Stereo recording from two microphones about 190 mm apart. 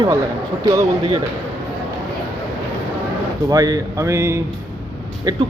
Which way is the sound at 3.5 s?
20° right (ahead or behind).